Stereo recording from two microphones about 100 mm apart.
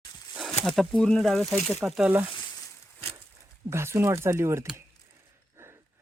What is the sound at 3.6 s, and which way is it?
Speech, 25° right (ahead or behind).